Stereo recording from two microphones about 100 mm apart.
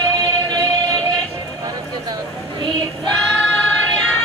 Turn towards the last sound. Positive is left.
turn(degrees=10)  # may be behind; listen again after turning